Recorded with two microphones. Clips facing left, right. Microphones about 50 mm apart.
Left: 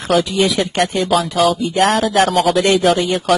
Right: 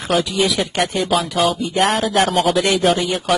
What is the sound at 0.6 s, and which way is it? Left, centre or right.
Speech, centre.